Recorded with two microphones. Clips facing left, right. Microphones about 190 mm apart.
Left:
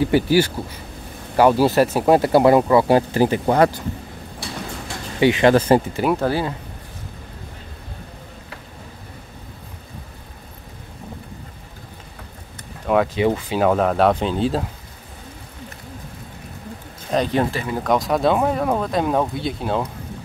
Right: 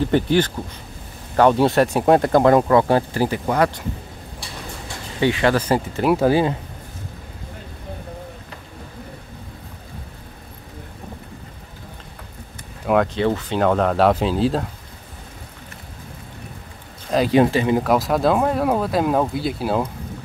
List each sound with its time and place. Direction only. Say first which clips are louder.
0.0 s speech: left 1 dB; 10° left (ahead or behind)
3.4 s speech: left 3 dB; 30° left (ahead or behind)
5.2 s speech: left 4 dB; 20° left (ahead or behind)
6.0 s speech: right 7 dB; 10° right (ahead or behind)
12.8 s speech: even; centre (ahead or behind)
17.3 s speech: right 6 dB; 15° right (ahead or behind)
17.8 s speech: even; centre (ahead or behind)